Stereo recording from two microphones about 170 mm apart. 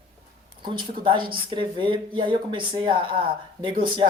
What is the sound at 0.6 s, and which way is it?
Speech, 30° right (ahead or behind).